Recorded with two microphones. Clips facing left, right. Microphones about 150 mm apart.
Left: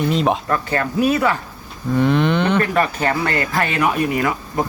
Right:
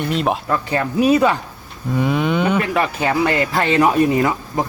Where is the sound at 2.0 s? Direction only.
5° right (ahead or behind).